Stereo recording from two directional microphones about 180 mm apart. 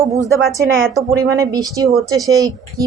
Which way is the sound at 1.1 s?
20° right (ahead or behind).